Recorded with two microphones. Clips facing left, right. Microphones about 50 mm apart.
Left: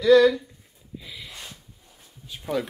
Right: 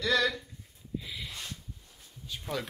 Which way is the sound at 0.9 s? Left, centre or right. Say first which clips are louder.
Right 1 dB; centre.